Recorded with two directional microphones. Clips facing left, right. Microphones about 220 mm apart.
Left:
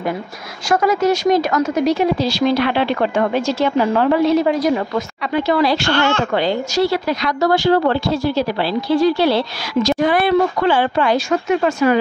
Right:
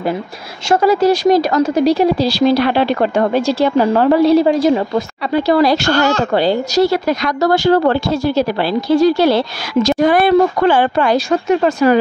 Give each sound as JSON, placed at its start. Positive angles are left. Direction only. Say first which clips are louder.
{"t": 0.7, "sound": "speech", "louder": "right 4 dB", "side_deg": -30}